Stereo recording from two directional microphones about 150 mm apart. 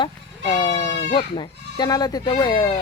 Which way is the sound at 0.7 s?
50° left (ahead or behind).